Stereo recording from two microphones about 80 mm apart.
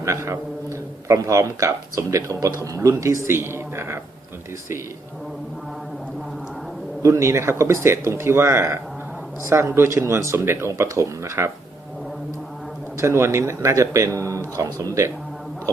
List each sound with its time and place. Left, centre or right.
0.0 s speech: right
7.0 s speech: right
13.0 s speech: right